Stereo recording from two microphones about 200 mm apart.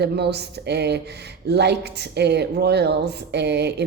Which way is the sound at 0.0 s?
55° right (ahead or behind).